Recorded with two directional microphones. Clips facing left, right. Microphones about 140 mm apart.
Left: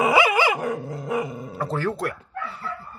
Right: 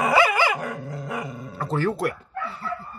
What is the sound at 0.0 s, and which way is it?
Dog, 20° left (ahead or behind).